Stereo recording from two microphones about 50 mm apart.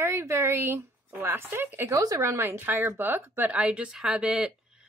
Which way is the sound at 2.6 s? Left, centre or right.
Right.